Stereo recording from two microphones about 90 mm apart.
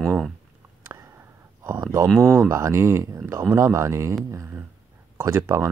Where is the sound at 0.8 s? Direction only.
35° right (ahead or behind).